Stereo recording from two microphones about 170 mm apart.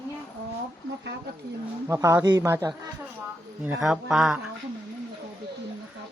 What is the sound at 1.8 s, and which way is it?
Speech, 20° right (ahead or behind).